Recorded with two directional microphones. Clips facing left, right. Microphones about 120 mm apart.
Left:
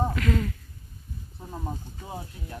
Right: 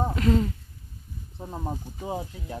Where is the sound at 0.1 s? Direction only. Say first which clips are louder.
Right 4 dB; 30° right (ahead or behind); by 2.1 s 15° right (ahead or behind).